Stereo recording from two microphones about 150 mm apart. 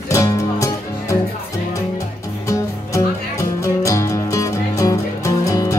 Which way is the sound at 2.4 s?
20° left (ahead or behind).